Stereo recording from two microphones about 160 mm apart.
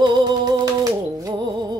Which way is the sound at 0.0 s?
25° right (ahead or behind).